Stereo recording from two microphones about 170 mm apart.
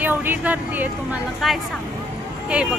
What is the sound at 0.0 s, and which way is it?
A woman's voice, 10° right (ahead or behind).